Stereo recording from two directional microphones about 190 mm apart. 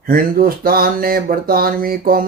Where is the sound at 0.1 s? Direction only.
50° right (ahead or behind).